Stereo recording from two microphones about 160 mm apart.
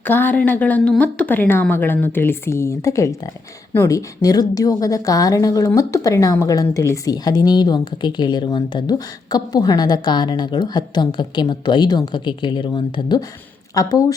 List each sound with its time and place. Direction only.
0.1 s a woman's voice: 10° left (ahead or behind)